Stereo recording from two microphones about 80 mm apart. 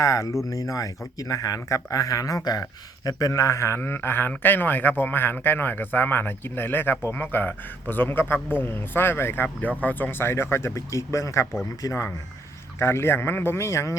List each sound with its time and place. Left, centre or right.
0.0 s a man's voice: left